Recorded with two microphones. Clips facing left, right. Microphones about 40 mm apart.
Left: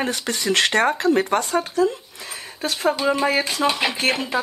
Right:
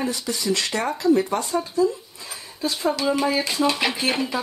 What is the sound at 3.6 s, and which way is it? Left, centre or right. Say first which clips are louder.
Speech: even; left.